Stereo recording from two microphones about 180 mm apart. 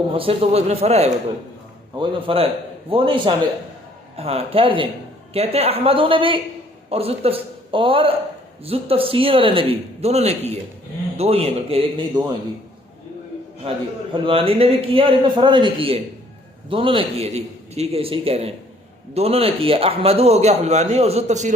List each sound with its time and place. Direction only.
0.1 s a man's voice: 30° right (ahead or behind)
13.6 s a man's voice: 30° right (ahead or behind)